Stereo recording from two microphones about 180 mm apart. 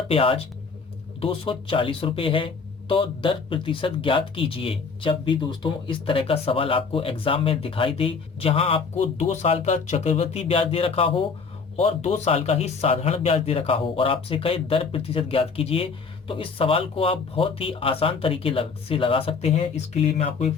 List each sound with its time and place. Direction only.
0.1 s a man's voice: 30° left (ahead or behind)